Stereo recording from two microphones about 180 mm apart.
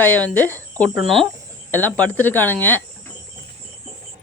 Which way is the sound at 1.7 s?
10° left (ahead or behind).